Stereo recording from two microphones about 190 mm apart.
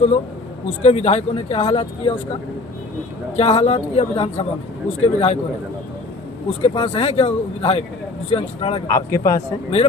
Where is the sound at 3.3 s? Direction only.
30° left (ahead or behind).